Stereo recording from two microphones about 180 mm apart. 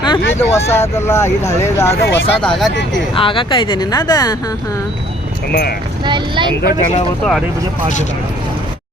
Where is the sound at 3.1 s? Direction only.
30° left (ahead or behind).